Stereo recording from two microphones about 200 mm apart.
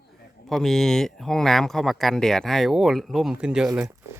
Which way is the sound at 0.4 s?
Centre (ahead or behind).